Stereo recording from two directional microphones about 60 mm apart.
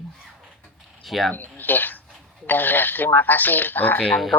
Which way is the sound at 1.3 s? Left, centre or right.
Left.